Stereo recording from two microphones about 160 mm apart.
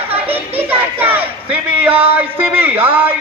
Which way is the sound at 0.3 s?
10° right (ahead or behind).